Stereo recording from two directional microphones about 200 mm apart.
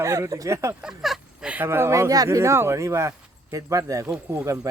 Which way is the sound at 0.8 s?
Centre (ahead or behind).